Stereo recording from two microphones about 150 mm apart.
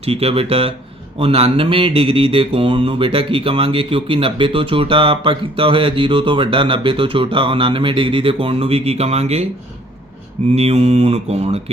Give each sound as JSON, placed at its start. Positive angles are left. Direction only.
{"t": 0.0, "sound": "mantra", "side_deg": -40}
{"t": 10.5, "sound": "mantra", "side_deg": -45}